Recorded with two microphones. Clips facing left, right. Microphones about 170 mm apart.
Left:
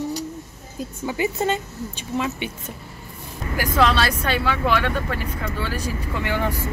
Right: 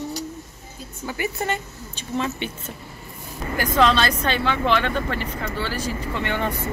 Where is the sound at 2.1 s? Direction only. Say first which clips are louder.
Even; 5° left (ahead or behind).